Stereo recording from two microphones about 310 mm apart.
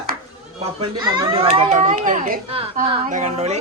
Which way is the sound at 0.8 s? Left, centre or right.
Centre.